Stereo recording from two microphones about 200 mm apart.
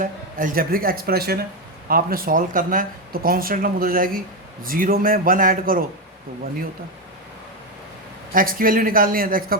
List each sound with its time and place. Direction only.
0.0 s speech: 40° right (ahead or behind)
8.3 s speech: 45° right (ahead or behind)